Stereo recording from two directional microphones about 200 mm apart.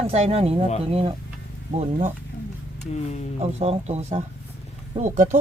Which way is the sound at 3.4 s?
30° right (ahead or behind).